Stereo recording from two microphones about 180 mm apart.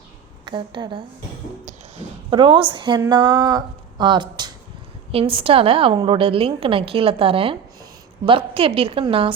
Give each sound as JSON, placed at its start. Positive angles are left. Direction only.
{"t": 0.4, "sound": "a woman's voice", "side_deg": -25}
{"t": 2.3, "sound": "a woman's voice", "side_deg": -25}